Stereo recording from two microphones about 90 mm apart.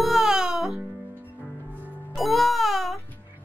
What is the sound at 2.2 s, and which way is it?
Music, centre (ahead or behind).